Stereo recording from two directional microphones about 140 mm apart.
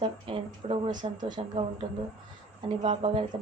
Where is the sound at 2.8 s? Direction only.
40° right (ahead or behind).